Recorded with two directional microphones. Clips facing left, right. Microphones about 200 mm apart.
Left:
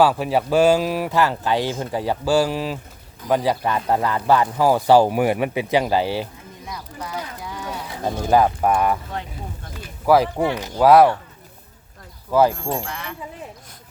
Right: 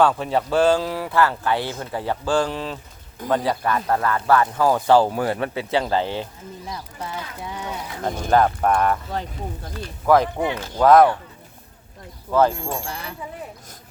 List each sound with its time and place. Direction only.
0.0 s speech: 10° left (ahead or behind)
6.7 s speech: 30° right (ahead or behind)
8.0 s speech: 10° left (ahead or behind)
12.3 s speech: 10° left (ahead or behind)
12.9 s speech: 35° right (ahead or behind)